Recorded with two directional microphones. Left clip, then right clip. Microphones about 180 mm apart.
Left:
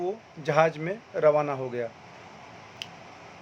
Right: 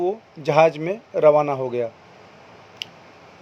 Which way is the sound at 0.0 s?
20° right (ahead or behind).